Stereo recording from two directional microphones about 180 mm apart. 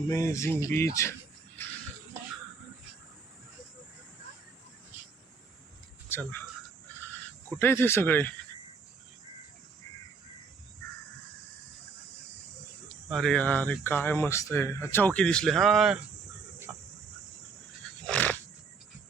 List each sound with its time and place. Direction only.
0.1 s speech: 15° left (ahead or behind)
6.1 s speech: 10° left (ahead or behind)
7.6 s speech: 15° left (ahead or behind)
13.1 s speech: centre (ahead or behind)
16.7 s chicken: 5° right (ahead or behind)
18.0 s wild animals: 5° left (ahead or behind)